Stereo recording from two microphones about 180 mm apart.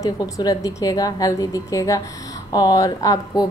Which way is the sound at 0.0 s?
20° left (ahead or behind).